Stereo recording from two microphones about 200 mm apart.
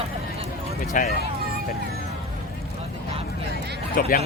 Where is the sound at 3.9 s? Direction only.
50° left (ahead or behind).